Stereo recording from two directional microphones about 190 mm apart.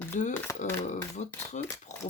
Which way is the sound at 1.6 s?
40° left (ahead or behind).